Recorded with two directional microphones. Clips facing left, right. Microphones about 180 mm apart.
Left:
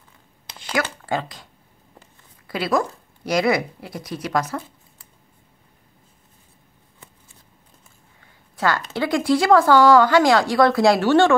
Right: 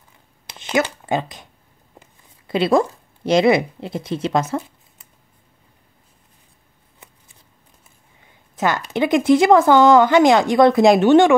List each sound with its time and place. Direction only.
0.6 s speech: 20° right (ahead or behind)
8.2 s a woman's voice: 20° right (ahead or behind)